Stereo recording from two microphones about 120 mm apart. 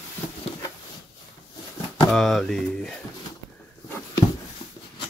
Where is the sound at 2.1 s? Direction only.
Centre (ahead or behind).